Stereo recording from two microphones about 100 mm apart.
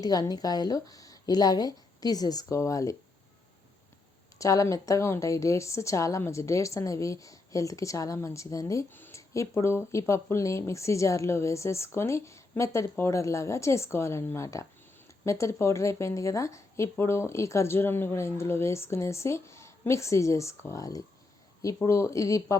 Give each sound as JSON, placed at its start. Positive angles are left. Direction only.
{"t": 0.0, "sound": "a woman's voice", "side_deg": 40}
{"t": 4.4, "sound": "a woman's voice", "side_deg": 35}
{"t": 8.9, "sound": "a sound", "side_deg": 20}
{"t": 9.3, "sound": "a woman's voice", "side_deg": 30}